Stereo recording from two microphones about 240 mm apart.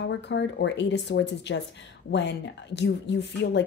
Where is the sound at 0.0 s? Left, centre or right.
Left.